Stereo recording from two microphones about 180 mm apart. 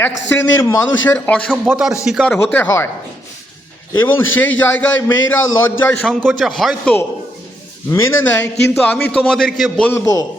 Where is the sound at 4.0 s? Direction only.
10° left (ahead or behind).